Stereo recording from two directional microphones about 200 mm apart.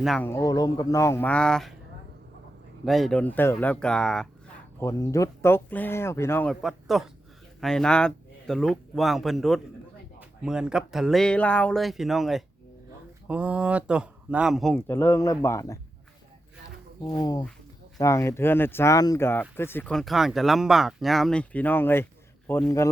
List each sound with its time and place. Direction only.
0.0 s speech: centre (ahead or behind)
0.3 s speech: 15° left (ahead or behind)
2.8 s speech: centre (ahead or behind)
4.8 s speech: 15° left (ahead or behind)
14.8 s speech: 15° left (ahead or behind)
17.2 s speech: 20° left (ahead or behind)